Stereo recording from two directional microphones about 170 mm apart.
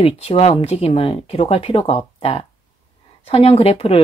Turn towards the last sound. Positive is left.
turn(degrees=35)  # may be behind; listen again after turning